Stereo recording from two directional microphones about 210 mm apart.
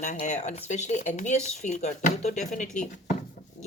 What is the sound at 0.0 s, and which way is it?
Speech, 35° left (ahead or behind).